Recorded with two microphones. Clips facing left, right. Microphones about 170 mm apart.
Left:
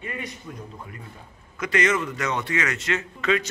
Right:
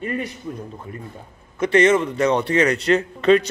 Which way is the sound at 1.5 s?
30° right (ahead or behind).